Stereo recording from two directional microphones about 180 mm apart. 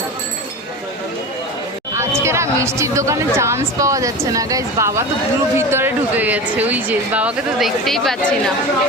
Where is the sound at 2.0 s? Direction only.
15° right (ahead or behind); by 8.4 s 5° left (ahead or behind).